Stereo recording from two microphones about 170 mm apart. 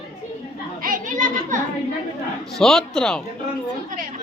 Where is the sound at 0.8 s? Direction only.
55° right (ahead or behind).